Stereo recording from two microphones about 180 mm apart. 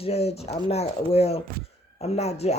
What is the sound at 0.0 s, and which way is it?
A woman's voice, 35° left (ahead or behind).